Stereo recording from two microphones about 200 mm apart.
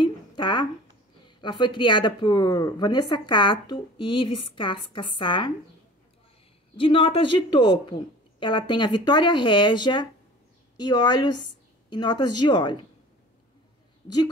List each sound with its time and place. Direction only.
0.0 s a sound: 25° left (ahead or behind)
1.2 s speech: 25° left (ahead or behind)
6.8 s speech: 25° left (ahead or behind)
14.0 s a woman's voice: 20° left (ahead or behind)